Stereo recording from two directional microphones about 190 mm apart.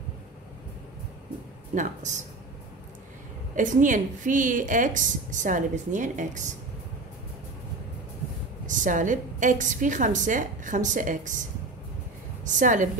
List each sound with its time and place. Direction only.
1.8 s a woman's voice: 40° right (ahead or behind)
3.5 s a woman's voice: 45° right (ahead or behind)
8.6 s a woman's voice: 40° right (ahead or behind)
12.4 s a woman's voice: 40° right (ahead or behind)